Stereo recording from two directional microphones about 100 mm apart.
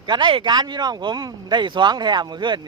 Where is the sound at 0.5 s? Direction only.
45° right (ahead or behind).